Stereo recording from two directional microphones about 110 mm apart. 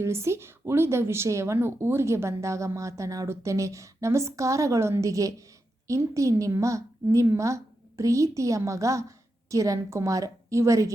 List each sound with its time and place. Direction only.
0.0 s a woman's voice: 25° right (ahead or behind)